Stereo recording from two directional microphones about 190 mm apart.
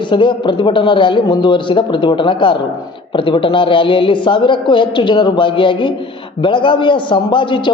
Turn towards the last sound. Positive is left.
turn(degrees=25)  # may be behind; listen again after turning